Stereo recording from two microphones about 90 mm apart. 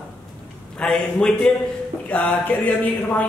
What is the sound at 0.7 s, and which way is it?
A man's voice, 10° left (ahead or behind).